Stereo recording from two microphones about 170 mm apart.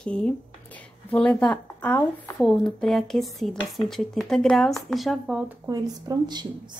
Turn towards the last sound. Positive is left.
turn(degrees=-25)  # may be behind; listen again after turning